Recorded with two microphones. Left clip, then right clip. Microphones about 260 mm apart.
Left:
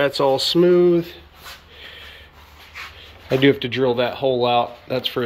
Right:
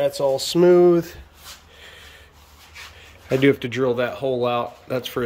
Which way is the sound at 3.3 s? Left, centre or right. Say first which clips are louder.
Left 2 dB; centre.